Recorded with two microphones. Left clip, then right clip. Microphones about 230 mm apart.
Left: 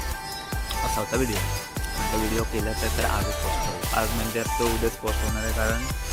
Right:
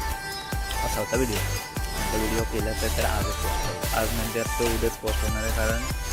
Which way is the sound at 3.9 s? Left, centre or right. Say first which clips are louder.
Left 1 dB; centre.